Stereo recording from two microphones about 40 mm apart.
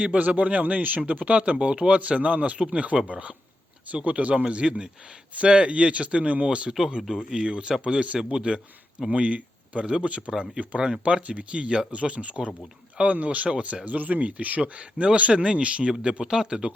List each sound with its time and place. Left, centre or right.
0.0 s speech: right
5.3 s speech: right
10.3 s speech: centre
10.6 s speech: right
16.2 s speech: centre